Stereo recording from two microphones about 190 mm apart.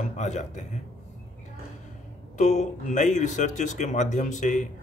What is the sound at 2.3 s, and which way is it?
Speech, 40° left (ahead or behind).